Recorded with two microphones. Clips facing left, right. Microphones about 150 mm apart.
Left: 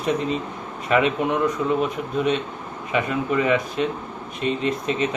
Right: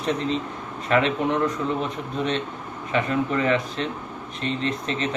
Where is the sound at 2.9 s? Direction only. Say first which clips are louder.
Even; 15° left (ahead or behind).